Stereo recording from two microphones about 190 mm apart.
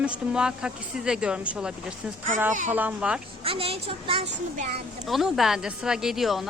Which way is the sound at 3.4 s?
30° right (ahead or behind).